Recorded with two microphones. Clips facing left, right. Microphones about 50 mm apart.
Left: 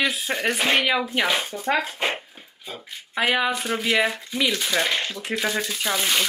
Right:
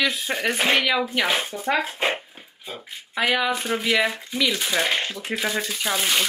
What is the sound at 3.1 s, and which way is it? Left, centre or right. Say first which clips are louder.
Speech: even; centre.